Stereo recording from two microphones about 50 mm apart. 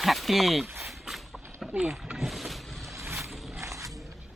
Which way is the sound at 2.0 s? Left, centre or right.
Centre.